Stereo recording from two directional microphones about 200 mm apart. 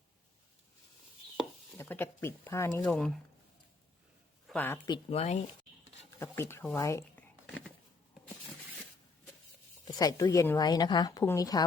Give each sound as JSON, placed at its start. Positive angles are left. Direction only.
{"t": 1.8, "sound": "speech", "side_deg": 10}
{"t": 2.8, "sound": "speech", "side_deg": 5}
{"t": 4.4, "sound": "a woman's voice", "side_deg": 10}
{"t": 4.9, "sound": "speech", "side_deg": 30}
{"t": 6.1, "sound": "speech", "side_deg": 15}
{"t": 9.8, "sound": "a woman's voice", "side_deg": 20}